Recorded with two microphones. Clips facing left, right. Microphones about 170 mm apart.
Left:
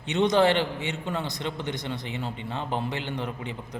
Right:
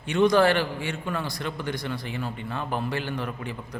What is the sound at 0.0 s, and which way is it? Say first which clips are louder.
A man's voice: right 2 dB; 20° left (ahead or behind).